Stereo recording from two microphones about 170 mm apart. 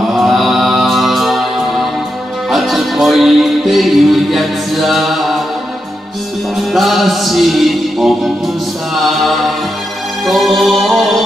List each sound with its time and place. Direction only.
0.2 s music: centre (ahead or behind)
6.7 s music: centre (ahead or behind)
9.0 s mantra: centre (ahead or behind)
10.2 s music: centre (ahead or behind)